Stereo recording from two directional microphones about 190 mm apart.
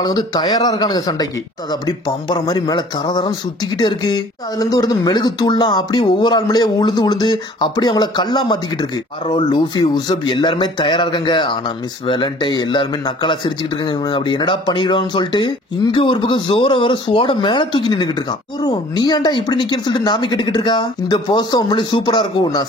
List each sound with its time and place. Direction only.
0.0 s speech: 20° left (ahead or behind)